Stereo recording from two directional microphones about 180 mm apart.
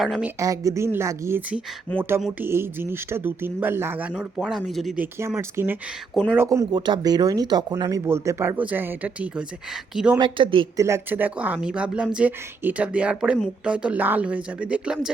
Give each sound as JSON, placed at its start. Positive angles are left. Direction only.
{"t": 0.0, "sound": "speech", "side_deg": -5}
{"t": 0.3, "sound": "speech", "side_deg": -20}
{"t": 5.4, "sound": "speech", "side_deg": -15}
{"t": 6.7, "sound": "speech", "side_deg": -25}
{"t": 10.2, "sound": "speech", "side_deg": -25}
{"t": 10.8, "sound": "speech", "side_deg": -15}